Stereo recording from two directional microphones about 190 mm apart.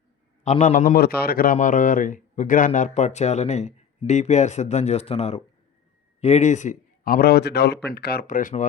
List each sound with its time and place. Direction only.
0.4 s a man's voice: 40° left (ahead or behind)